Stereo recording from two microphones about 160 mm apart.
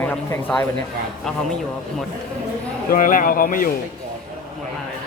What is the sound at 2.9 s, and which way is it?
Speech, 60° left (ahead or behind).